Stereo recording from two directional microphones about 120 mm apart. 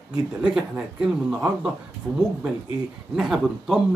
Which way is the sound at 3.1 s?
5° right (ahead or behind).